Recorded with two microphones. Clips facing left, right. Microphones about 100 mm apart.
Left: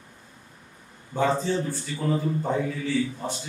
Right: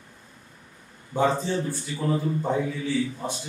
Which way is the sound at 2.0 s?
Centre (ahead or behind).